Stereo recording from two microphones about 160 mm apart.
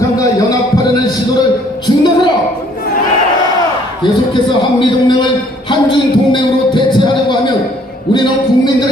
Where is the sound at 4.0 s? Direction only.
30° left (ahead or behind).